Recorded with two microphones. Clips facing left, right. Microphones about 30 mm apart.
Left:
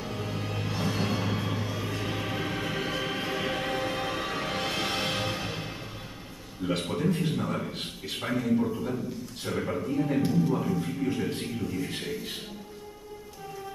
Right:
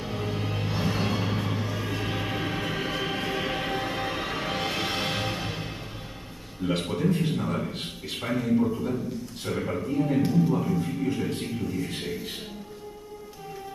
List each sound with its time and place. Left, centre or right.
0.0 s music: centre
6.6 s a man's voice: centre